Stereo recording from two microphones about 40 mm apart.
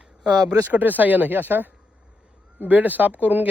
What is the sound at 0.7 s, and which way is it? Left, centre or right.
Speech, right.